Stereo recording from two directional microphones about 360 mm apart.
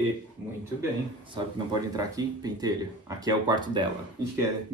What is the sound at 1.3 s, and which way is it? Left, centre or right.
Speech, centre.